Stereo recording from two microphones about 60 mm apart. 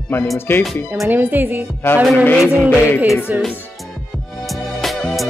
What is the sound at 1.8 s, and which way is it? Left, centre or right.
Speech, left.